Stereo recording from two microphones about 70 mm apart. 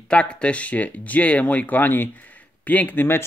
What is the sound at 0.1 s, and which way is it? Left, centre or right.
Speech, centre.